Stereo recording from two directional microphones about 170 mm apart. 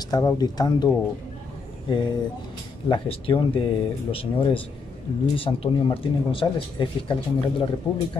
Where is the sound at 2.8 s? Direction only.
30° left (ahead or behind).